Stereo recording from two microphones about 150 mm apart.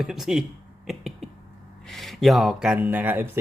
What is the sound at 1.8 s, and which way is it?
Speech, centre (ahead or behind).